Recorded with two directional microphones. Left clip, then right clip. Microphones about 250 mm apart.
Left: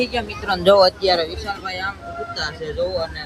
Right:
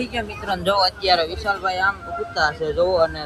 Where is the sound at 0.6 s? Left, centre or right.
Left.